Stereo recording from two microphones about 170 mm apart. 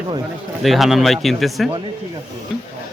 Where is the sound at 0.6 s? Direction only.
Centre (ahead or behind).